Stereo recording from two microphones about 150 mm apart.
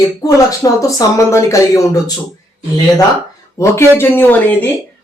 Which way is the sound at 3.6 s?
15° left (ahead or behind).